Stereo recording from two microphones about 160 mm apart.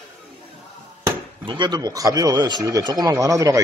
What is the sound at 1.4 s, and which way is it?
Speech, 30° right (ahead or behind).